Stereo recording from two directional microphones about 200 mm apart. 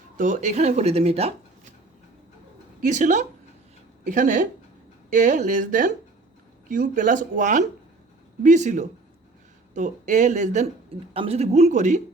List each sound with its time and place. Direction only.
0.2 s speech: 40° right (ahead or behind)
2.8 s speech: 40° right (ahead or behind)